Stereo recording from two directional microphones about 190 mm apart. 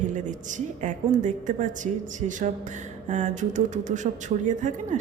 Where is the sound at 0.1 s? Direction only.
40° right (ahead or behind).